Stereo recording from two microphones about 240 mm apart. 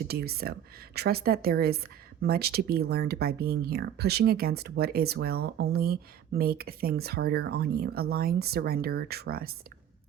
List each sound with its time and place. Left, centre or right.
0.1 s speech: right